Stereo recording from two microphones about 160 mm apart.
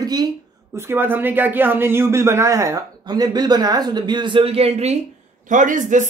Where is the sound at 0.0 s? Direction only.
25° right (ahead or behind).